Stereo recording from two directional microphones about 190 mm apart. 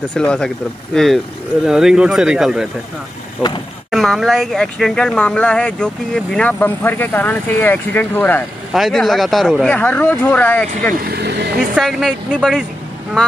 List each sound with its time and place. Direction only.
0.1 s speech: 5° left (ahead or behind)
11.0 s speech: 55° right (ahead or behind)
11.7 s speech: centre (ahead or behind)